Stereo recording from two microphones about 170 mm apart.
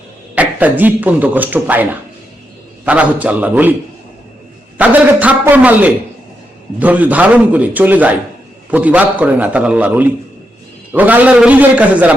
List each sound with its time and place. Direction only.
0.3 s speech: 10° right (ahead or behind)
4.8 s speech: 10° right (ahead or behind)